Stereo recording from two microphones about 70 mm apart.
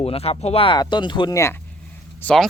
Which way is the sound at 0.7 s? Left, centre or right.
Left.